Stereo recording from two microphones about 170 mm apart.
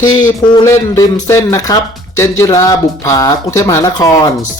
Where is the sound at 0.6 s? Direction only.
15° left (ahead or behind).